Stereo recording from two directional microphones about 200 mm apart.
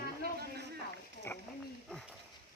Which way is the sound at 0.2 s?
55° right (ahead or behind).